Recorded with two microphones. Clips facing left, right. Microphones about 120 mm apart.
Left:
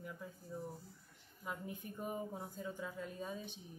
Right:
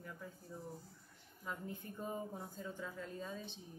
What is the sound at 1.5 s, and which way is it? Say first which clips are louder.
Speech: even; 10° left (ahead or behind).